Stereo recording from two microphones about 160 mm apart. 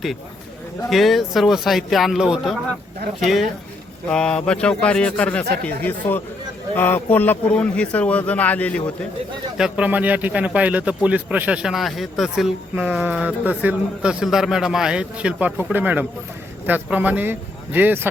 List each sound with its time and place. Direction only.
0.9 s speech: centre (ahead or behind)
4.1 s speech: 5° left (ahead or behind)
9.6 s a man's voice: 5° right (ahead or behind)